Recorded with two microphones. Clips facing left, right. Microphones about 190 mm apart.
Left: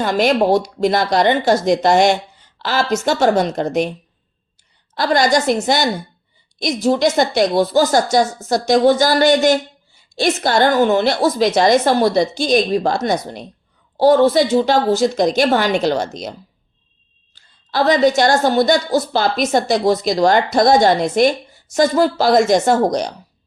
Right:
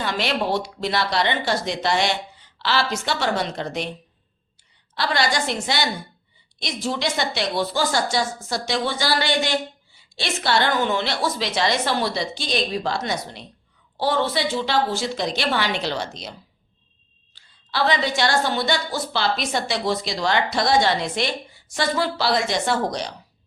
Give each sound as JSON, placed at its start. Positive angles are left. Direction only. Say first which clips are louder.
{"t": 0.0, "sound": "a woman's voice", "louder": "left 9 dB", "side_deg": 45}
{"t": 4.9, "sound": "a woman's voice", "louder": "left 8 dB", "side_deg": 45}
{"t": 17.3, "sound": "a woman's voice", "louder": "left 7 dB", "side_deg": 45}